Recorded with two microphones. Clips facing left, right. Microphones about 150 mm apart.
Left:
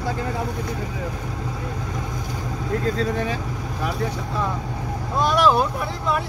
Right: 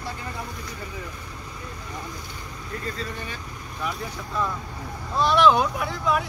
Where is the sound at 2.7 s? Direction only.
90° left.